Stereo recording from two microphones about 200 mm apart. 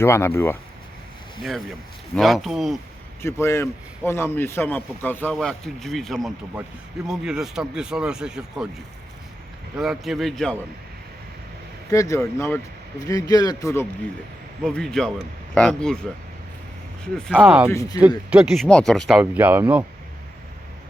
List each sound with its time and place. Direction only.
0.0 s a man's voice: 10° left (ahead or behind)
2.1 s speech: centre (ahead or behind)
3.2 s a man's voice: 15° left (ahead or behind); by 8.6 s 5° right (ahead or behind)
9.7 s speech: centre (ahead or behind)
11.9 s a man's voice: 15° left (ahead or behind)
14.6 s speech: 5° left (ahead or behind)
17.2 s speech: 5° left (ahead or behind)
17.7 s a man's voice: 15° left (ahead or behind)
18.3 s speech: 5° right (ahead or behind)